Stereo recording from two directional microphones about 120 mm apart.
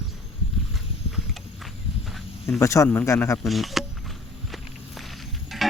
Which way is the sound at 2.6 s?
25° left (ahead or behind).